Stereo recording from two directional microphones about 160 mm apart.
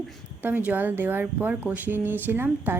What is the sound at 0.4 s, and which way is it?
Speech, 10° right (ahead or behind).